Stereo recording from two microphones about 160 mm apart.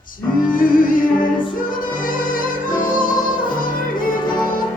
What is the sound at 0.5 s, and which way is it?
Music, 60° left (ahead or behind).